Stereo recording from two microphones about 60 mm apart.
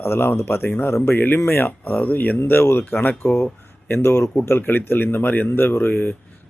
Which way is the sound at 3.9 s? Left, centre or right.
Left.